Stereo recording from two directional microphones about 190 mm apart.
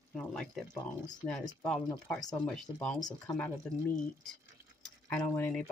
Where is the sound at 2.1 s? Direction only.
20° left (ahead or behind).